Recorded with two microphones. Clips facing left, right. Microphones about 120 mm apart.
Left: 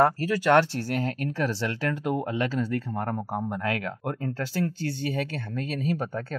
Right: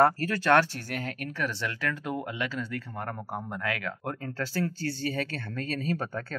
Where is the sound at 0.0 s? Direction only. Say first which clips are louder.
Left 2 dB; 15° left (ahead or behind).